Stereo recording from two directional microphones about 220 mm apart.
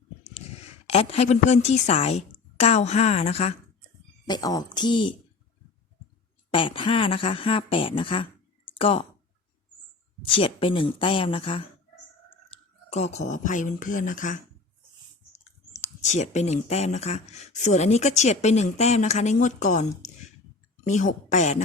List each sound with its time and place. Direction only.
0.9 s a woman's voice: 30° left (ahead or behind)
4.3 s a woman's voice: 15° left (ahead or behind)
6.5 s a woman's voice: 25° left (ahead or behind)
10.2 s a woman's voice: 25° left (ahead or behind)